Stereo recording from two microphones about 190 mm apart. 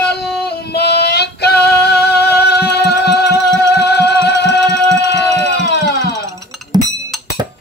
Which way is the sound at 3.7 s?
60° left (ahead or behind).